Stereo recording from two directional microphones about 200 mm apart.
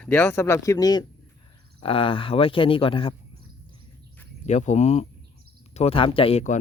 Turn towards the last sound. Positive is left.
turn(degrees=30)  # may be behind; listen again after turning